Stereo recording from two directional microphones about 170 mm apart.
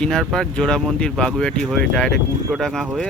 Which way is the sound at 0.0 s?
5° left (ahead or behind).